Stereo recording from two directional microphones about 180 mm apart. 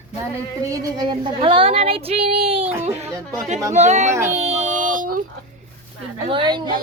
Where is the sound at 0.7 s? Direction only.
25° right (ahead or behind).